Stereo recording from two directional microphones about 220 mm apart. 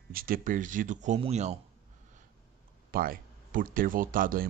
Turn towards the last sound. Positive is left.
turn(degrees=-40)  # may be behind; listen again after turning